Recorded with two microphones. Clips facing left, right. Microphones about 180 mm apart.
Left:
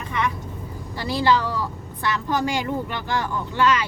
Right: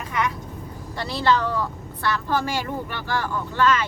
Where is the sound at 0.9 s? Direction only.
10° left (ahead or behind).